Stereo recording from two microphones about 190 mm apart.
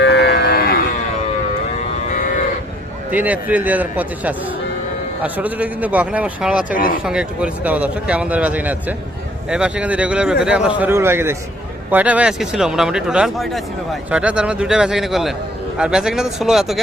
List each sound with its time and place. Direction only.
0.0 s a sound: 65° left (ahead or behind)
3.1 s speech: 10° right (ahead or behind)
6.7 s speech: 50° left (ahead or behind)
7.0 s speech: 5° right (ahead or behind)